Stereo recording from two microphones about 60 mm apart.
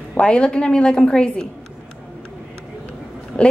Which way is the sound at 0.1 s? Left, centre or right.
Centre.